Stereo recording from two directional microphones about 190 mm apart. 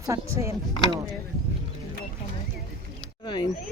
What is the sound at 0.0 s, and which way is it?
Speech, 15° right (ahead or behind).